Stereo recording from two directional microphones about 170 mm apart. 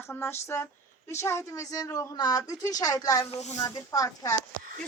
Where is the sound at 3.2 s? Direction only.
40° left (ahead or behind).